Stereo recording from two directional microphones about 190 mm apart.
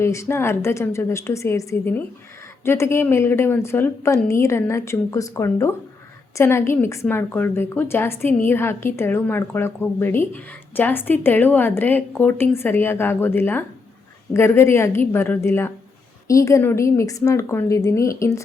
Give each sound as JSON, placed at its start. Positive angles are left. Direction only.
{"t": 0.0, "sound": "speech", "side_deg": 15}